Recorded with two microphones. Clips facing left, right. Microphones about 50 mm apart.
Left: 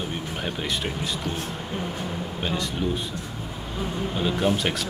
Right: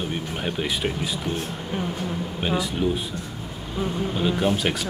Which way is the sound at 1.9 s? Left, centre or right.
Centre.